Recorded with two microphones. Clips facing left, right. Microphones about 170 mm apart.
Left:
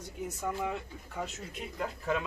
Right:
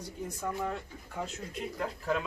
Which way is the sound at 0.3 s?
5° left (ahead or behind).